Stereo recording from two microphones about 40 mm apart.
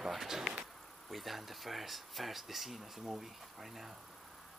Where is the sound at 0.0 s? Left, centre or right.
Centre.